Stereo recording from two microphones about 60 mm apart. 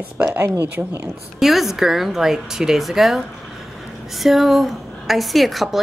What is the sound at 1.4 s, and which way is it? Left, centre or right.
A woman's voice, centre.